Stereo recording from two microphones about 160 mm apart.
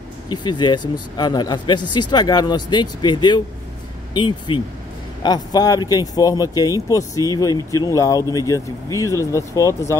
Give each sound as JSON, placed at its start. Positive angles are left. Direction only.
{"t": 0.3, "sound": "speech", "side_deg": 25}